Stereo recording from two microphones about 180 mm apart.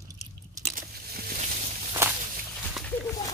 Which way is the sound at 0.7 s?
60° right (ahead or behind).